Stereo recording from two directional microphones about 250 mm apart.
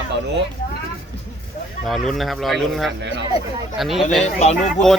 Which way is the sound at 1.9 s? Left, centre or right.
Centre.